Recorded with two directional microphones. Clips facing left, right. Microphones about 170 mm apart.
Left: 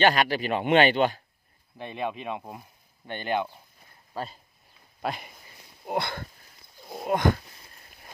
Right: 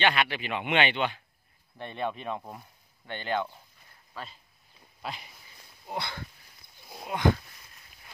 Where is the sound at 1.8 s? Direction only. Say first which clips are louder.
Left 1 dB; 10° left (ahead or behind).